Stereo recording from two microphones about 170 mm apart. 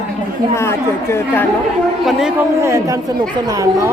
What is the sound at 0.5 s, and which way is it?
Speech, 15° left (ahead or behind).